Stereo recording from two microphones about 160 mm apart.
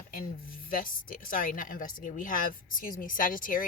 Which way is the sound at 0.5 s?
60° left (ahead or behind).